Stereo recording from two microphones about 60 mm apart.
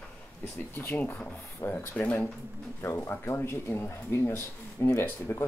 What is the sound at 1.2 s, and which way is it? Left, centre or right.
Speech, left.